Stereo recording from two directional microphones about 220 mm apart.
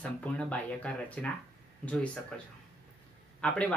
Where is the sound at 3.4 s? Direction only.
5° left (ahead or behind).